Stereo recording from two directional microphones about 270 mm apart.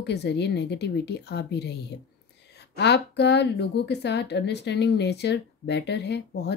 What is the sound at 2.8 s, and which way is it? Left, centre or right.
A woman's voice, left.